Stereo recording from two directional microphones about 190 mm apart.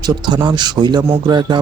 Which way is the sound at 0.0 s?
20° right (ahead or behind).